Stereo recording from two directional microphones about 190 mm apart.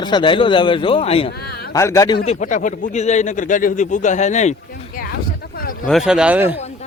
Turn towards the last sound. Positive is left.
turn(degrees=-10)  # may be behind; listen again after turning